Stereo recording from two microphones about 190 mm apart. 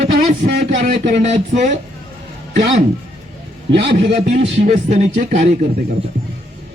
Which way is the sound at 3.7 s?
65° right (ahead or behind).